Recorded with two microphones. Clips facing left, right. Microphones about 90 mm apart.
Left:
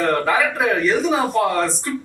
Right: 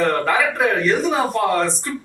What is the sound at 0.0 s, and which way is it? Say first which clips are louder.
Speech: even; centre (ahead or behind).